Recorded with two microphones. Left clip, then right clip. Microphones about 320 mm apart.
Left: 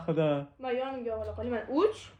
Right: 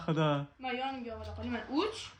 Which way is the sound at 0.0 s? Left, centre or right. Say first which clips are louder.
Left 3 dB; right.